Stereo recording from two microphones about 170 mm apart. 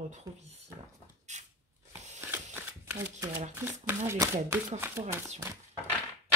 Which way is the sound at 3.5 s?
15° right (ahead or behind).